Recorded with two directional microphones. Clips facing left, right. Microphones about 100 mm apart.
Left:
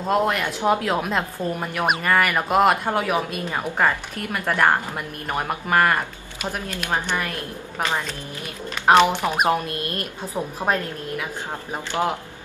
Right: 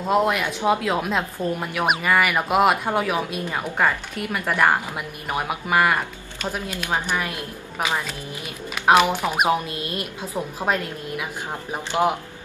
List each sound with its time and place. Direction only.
0.0 s a woman's voice: 5° right (ahead or behind)
6.4 s speech: 15° right (ahead or behind)
8.8 s a woman's voice: 5° right (ahead or behind)
9.7 s speech: 50° left (ahead or behind)
10.6 s a woman's voice: 15° left (ahead or behind)
11.7 s speech: 15° right (ahead or behind)